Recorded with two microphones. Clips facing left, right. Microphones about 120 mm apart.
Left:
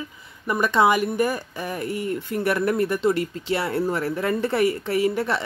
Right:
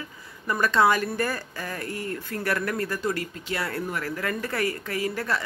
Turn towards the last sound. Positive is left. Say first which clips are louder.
# left 6 dB
turn(degrees=25)  # may be behind; listen again after turning